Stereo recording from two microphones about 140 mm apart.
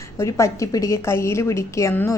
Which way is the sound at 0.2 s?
20° left (ahead or behind).